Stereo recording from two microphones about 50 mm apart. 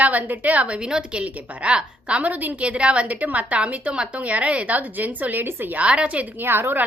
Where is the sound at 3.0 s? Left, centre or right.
Right.